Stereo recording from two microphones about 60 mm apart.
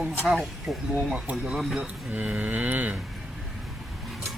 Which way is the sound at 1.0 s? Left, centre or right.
Right.